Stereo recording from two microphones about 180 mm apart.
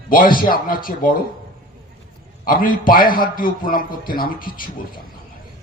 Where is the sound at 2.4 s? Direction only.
50° left (ahead or behind).